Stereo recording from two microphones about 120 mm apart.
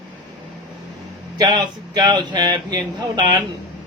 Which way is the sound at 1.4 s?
35° right (ahead or behind).